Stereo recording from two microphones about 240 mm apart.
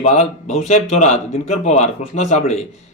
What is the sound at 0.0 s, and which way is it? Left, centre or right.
Speech, left.